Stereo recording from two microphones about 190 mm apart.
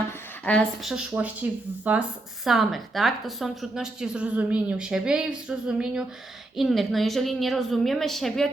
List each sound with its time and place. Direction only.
0.4 s speech: 5° left (ahead or behind)